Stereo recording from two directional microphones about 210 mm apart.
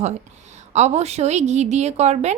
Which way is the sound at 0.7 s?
30° right (ahead or behind).